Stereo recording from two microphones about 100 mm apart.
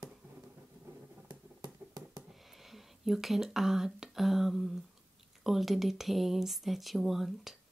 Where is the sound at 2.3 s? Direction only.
Centre (ahead or behind).